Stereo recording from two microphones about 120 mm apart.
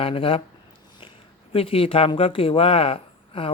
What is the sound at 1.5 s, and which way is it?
Speech, 50° left (ahead or behind).